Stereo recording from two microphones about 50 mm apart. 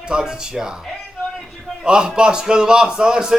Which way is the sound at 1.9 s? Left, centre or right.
Centre.